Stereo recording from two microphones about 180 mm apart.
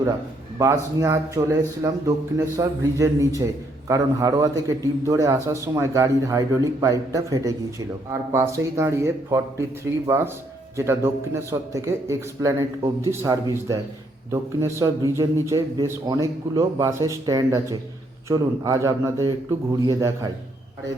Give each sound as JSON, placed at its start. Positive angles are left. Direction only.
{"t": 0.6, "sound": "a man's voice", "side_deg": -15}
{"t": 10.8, "sound": "a man's voice", "side_deg": -15}